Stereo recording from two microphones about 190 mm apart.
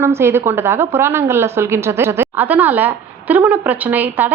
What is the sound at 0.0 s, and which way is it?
A woman's voice, 15° right (ahead or behind).